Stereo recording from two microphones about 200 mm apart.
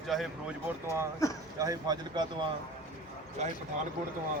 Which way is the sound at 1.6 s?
20° right (ahead or behind).